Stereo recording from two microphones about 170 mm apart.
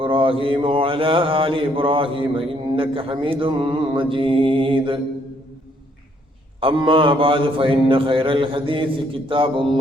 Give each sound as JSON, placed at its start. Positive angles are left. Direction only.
{"t": 0.0, "sound": "mantra", "side_deg": -30}
{"t": 6.6, "sound": "mantra", "side_deg": -30}